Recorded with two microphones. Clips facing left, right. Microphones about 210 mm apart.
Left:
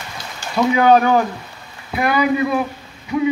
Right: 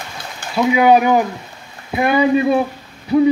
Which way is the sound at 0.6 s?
10° right (ahead or behind).